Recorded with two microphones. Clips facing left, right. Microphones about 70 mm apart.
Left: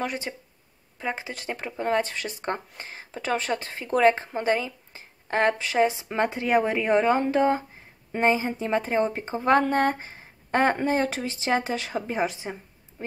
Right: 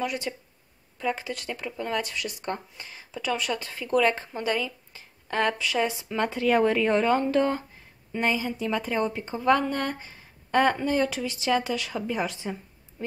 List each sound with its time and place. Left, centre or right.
0.0 s a woman's voice: left